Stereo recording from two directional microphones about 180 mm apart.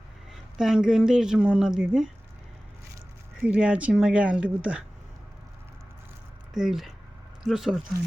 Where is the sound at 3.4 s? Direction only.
5° right (ahead or behind).